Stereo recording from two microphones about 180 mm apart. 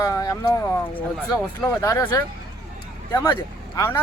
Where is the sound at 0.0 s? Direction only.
20° left (ahead or behind).